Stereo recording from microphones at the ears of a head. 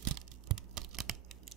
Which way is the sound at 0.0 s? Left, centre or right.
Right.